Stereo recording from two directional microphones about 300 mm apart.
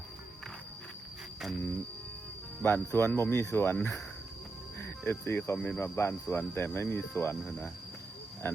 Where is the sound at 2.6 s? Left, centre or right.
Centre.